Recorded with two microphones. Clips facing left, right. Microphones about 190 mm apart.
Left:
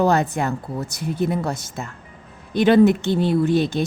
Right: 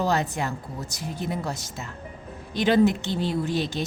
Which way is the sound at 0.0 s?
55° left (ahead or behind).